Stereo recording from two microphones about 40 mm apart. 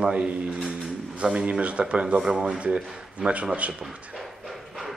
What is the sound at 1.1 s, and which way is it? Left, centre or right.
Speech, right.